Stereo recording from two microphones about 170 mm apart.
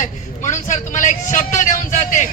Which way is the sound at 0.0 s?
45° left (ahead or behind).